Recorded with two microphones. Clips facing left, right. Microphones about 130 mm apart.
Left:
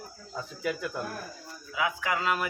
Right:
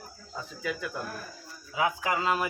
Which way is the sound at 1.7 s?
30° right (ahead or behind).